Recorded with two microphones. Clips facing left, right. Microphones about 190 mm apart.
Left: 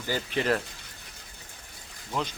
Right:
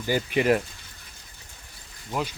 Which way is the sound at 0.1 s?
15° right (ahead or behind).